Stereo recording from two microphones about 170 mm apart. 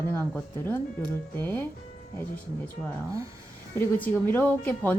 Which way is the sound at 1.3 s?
10° left (ahead or behind).